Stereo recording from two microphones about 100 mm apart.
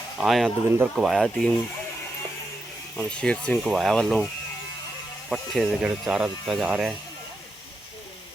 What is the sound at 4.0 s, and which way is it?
Speech, 5° left (ahead or behind).